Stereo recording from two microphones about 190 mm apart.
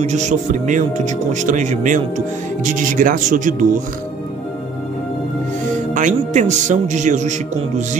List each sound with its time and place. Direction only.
0.0 s speech: 35° right (ahead or behind)
5.9 s speech: 40° right (ahead or behind)